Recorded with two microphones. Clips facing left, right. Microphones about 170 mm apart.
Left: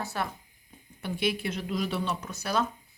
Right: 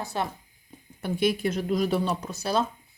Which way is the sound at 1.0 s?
45° right (ahead or behind).